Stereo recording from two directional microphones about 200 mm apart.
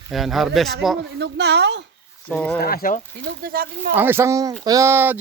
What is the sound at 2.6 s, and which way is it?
Speech, 50° left (ahead or behind).